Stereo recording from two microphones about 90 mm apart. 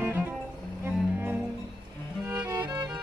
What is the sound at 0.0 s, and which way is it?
Cello, 20° right (ahead or behind).